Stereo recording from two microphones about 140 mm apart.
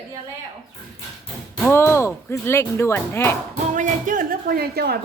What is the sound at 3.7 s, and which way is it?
Speech, 70° right (ahead or behind).